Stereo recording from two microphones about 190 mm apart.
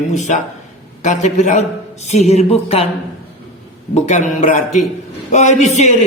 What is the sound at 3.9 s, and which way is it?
A man's voice, 40° left (ahead or behind).